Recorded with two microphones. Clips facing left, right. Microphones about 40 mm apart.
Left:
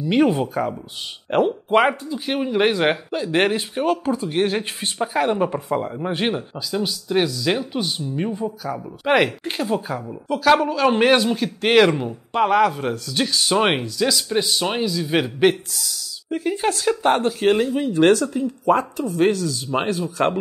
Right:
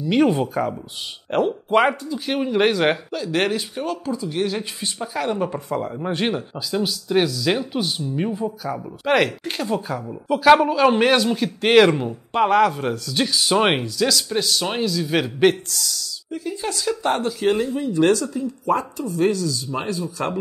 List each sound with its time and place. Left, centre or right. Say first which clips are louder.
0.0 s speech: even; centre
3.1 s speech: left 2 dB; left; by 8.8 s centre
9.0 s speech: left 1 dB; centre
10.2 s speech: right 3 dB; centre
11.0 s speech: left 1 dB; centre
16.3 s speech: left 6 dB; left